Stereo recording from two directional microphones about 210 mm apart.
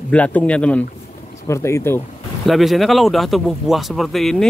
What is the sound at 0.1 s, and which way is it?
Speech, 5° left (ahead or behind).